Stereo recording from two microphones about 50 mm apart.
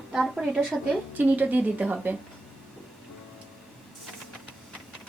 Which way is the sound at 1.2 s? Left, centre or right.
Right.